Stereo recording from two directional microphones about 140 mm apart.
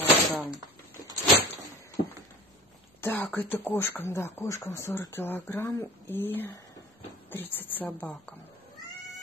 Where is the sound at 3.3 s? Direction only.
15° left (ahead or behind).